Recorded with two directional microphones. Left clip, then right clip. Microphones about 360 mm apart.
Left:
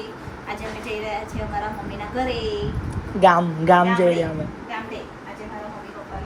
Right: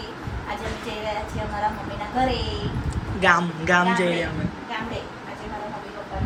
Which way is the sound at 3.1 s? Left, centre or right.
Centre.